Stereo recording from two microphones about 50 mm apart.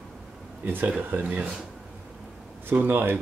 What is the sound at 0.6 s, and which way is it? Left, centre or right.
Speech, right.